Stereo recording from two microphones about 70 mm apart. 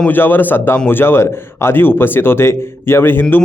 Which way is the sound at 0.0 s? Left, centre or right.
Left.